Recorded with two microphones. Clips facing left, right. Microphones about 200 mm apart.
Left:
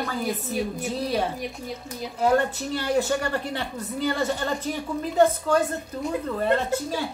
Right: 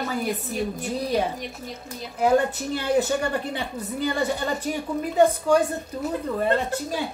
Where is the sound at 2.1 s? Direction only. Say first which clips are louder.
Right 2 dB; 15° right (ahead or behind).